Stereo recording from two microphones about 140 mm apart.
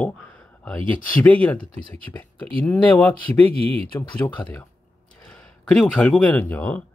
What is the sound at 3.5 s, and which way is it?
Speech, 40° right (ahead or behind).